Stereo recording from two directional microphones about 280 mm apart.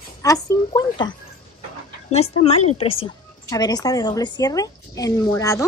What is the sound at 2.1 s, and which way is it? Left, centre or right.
A woman's voice, left.